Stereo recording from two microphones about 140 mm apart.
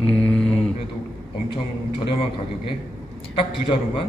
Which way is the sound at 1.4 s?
40° left (ahead or behind).